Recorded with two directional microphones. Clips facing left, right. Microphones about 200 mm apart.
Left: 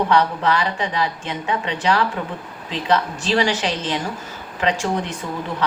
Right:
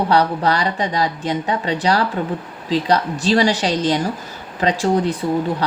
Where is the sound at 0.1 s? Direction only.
35° right (ahead or behind).